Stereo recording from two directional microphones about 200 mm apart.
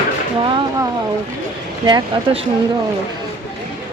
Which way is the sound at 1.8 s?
20° right (ahead or behind).